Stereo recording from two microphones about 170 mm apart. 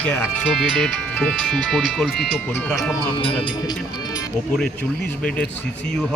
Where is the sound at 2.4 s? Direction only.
10° left (ahead or behind).